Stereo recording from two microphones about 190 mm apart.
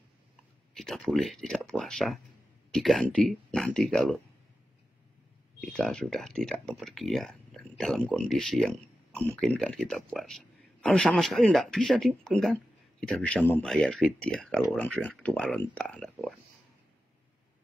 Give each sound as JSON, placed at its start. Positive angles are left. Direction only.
{"t": 0.7, "sound": "speech", "side_deg": 0}
{"t": 5.6, "sound": "speech", "side_deg": 5}